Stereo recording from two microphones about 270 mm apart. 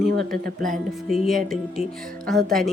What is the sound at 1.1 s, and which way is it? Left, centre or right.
Speech, centre.